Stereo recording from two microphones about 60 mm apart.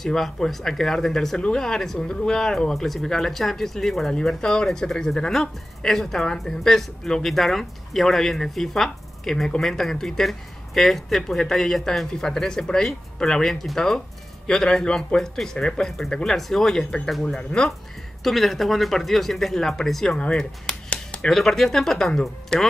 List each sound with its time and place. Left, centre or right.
0.0 s speech: centre
18.2 s speech: centre
20.2 s a sound: centre
21.4 s speech: centre